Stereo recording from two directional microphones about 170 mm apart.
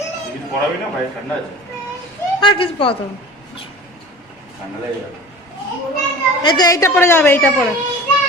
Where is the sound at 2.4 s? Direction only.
30° left (ahead or behind).